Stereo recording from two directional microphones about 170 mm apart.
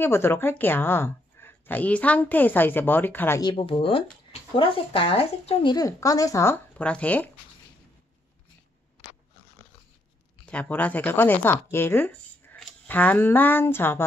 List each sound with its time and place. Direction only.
0.0 s a woman's voice: 15° left (ahead or behind)
3.4 s speech: 30° left (ahead or behind); by 7.2 s 10° left (ahead or behind)
10.4 s a woman's voice: 10° left (ahead or behind)